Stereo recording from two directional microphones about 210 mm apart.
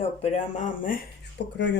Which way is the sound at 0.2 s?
35° left (ahead or behind).